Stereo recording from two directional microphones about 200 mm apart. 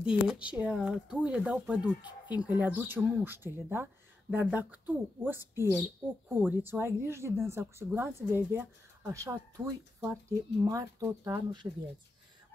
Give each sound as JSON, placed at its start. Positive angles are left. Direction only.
{"t": 0.0, "sound": "speech", "side_deg": -5}